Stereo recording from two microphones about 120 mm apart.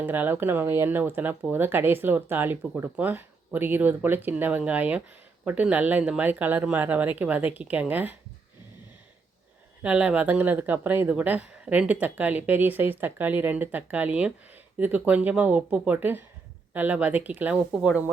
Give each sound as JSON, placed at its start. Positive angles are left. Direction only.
{"t": 0.0, "sound": "speech", "side_deg": -15}
{"t": 9.8, "sound": "speech", "side_deg": -10}